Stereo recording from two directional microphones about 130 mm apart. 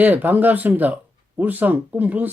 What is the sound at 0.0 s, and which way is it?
Speech, 15° right (ahead or behind).